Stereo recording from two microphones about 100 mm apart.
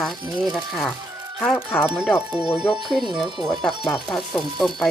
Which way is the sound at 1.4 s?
15° left (ahead or behind).